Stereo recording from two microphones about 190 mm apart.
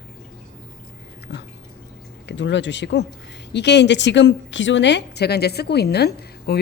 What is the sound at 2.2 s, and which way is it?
A woman's voice, 70° left (ahead or behind).